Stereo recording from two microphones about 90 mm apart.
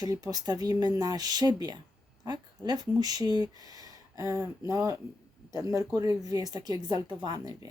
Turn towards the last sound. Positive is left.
turn(degrees=-40)  # may be behind; listen again after turning